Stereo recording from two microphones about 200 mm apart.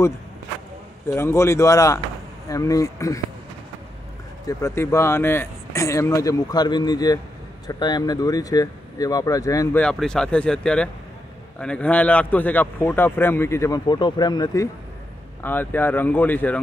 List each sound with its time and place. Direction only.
1.1 s a man's voice: 15° left (ahead or behind)
4.5 s a man's voice: 15° left (ahead or behind)
9.8 s a man's voice: 5° left (ahead or behind)